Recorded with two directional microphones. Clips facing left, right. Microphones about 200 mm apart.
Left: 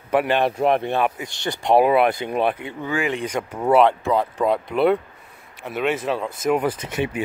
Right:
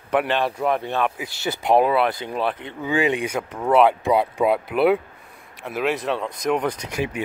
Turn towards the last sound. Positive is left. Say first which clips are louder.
# left 1 dB
turn(degrees=0)  # may be behind; listen again after turning